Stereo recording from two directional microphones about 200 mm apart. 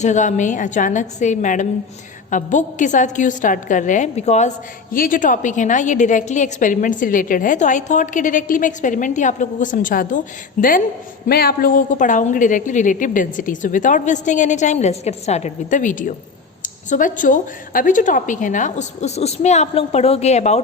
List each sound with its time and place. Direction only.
0.0 s a woman's voice: 35° left (ahead or behind)